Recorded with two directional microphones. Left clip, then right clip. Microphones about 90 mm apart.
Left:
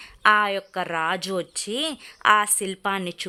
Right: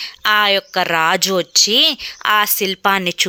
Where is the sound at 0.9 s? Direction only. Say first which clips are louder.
Right 10 dB; 40° right (ahead or behind).